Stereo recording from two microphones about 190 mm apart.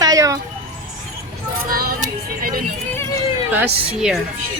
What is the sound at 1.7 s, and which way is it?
Music, 50° right (ahead or behind).